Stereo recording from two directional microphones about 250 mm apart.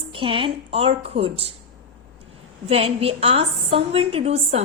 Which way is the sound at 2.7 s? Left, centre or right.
Right.